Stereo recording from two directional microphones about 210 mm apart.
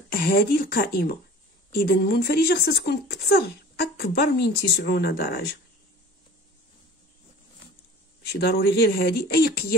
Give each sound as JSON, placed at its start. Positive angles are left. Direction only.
{"t": 0.1, "sound": "speech", "side_deg": 45}
{"t": 8.3, "sound": "speech", "side_deg": 50}